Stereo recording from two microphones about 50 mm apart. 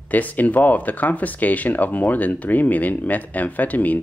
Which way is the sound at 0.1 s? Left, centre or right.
Left.